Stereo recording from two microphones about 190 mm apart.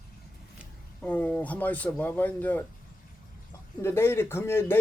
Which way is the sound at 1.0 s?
10° left (ahead or behind).